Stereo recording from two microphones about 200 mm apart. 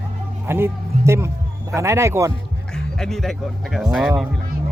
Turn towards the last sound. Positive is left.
turn(degrees=-5)  # may be behind; listen again after turning